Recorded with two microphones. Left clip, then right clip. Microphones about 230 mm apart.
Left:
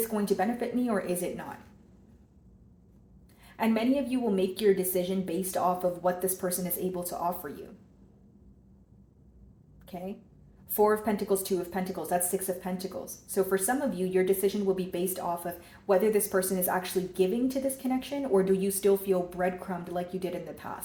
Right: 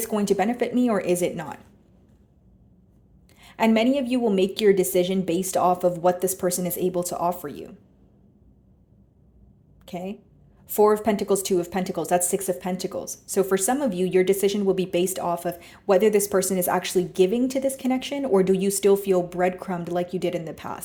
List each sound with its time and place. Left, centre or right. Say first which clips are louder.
0.1 s speech: right 6 dB; right
3.4 s speech: right 8 dB; right
9.8 s speech: right 6 dB; right